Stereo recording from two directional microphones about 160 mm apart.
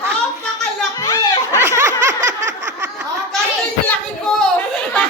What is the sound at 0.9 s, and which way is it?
Chatter, 20° left (ahead or behind).